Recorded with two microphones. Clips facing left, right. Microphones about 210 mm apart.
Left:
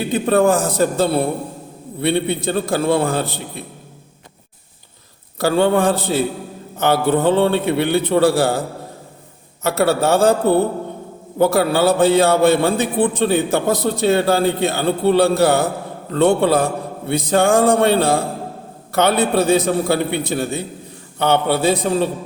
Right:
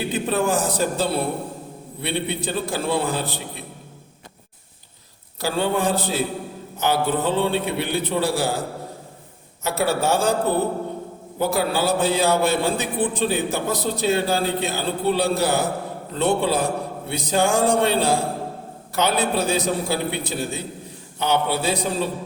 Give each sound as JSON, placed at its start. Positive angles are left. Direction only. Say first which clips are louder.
{"t": 0.1, "sound": "a man's voice", "louder": "left 8 dB", "side_deg": 60}
{"t": 5.4, "sound": "a man's voice", "louder": "left 7 dB", "side_deg": 60}
{"t": 9.6, "sound": "a man's voice", "louder": "left 5 dB", "side_deg": 60}
{"t": 19.3, "sound": "a man's voice", "louder": "left 6 dB", "side_deg": 60}